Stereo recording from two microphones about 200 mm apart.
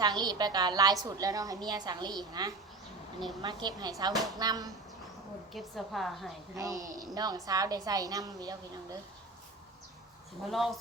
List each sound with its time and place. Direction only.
0.0 s a woman's voice: 20° right (ahead or behind)
5.5 s a woman's voice: centre (ahead or behind)
6.6 s a woman's voice: 15° right (ahead or behind)
10.5 s a woman's voice: centre (ahead or behind)